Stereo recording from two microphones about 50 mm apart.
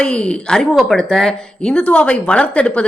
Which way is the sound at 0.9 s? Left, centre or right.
Centre.